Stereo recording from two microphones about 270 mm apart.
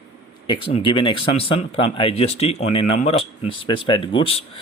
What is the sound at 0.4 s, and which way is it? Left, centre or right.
Speech, centre.